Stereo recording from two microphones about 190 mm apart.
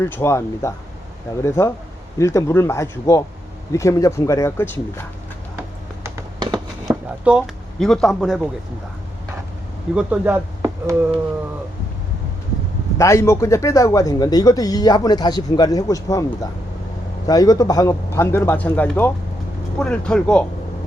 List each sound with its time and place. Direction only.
0.0 s speech: 15° left (ahead or behind)
6.4 s a sound: 20° right (ahead or behind)
7.3 s speech: 5° right (ahead or behind)
9.9 s speech: 5° right (ahead or behind)
13.0 s speech: 15° left (ahead or behind)